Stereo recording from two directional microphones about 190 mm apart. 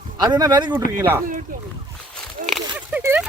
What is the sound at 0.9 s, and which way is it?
Speech, 10° right (ahead or behind).